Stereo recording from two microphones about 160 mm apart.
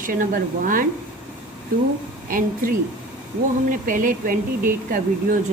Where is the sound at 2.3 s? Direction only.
60° right (ahead or behind).